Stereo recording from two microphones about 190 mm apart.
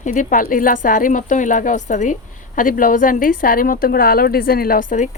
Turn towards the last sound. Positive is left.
turn(degrees=45)  # may be behind; listen again after turning